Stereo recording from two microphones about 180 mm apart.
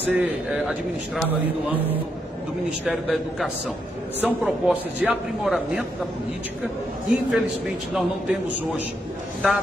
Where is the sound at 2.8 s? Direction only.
Centre (ahead or behind).